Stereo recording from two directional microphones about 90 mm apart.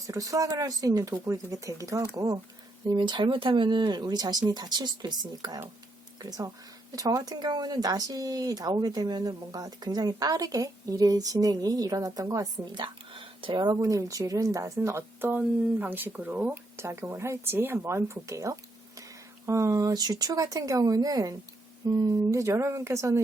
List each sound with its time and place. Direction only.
0.1 s speech: 40° right (ahead or behind)
2.8 s speech: 55° right (ahead or behind); by 12.5 s 40° right (ahead or behind)
12.7 s speech: 65° right (ahead or behind)
13.7 s speech: 40° right (ahead or behind); by 16.6 s 15° right (ahead or behind)
16.7 s speech: 30° right (ahead or behind)
19.9 s speech: 50° right (ahead or behind)